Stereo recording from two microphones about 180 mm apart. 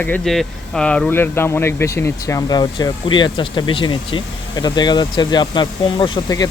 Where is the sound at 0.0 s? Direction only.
5° left (ahead or behind).